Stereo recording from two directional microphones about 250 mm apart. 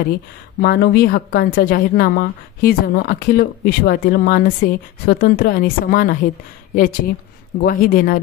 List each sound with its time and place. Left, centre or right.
0.6 s a woman's voice: left